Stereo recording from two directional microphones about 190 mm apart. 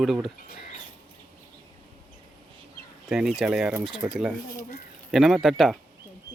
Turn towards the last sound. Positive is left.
turn(degrees=0)  # may be behind; listen again after turning